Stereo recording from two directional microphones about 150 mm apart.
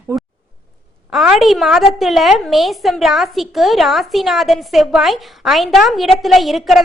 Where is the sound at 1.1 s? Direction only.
Centre (ahead or behind).